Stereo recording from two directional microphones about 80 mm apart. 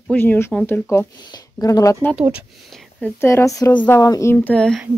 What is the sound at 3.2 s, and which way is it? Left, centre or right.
Speech, left.